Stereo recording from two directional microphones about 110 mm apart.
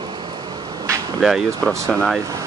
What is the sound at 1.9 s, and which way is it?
Speech, 10° left (ahead or behind).